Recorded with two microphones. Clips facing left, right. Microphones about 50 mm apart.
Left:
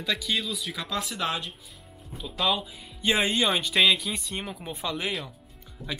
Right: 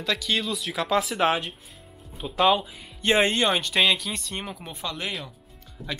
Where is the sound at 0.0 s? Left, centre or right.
Centre.